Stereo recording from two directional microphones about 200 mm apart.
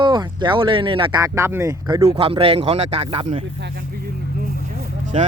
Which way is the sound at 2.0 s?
30° right (ahead or behind).